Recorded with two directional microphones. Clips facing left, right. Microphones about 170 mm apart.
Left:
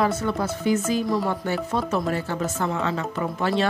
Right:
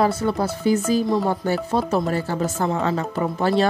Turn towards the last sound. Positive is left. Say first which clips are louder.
# right 4 dB
turn(degrees=-35)  # may be behind; listen again after turning